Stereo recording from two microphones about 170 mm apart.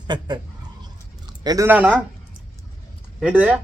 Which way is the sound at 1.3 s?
20° right (ahead or behind).